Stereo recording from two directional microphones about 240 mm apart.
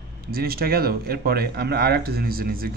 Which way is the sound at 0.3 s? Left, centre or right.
Right.